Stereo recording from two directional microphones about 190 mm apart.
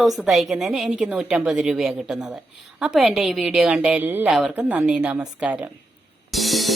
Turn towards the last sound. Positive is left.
turn(degrees=0)  # may be behind; listen again after turning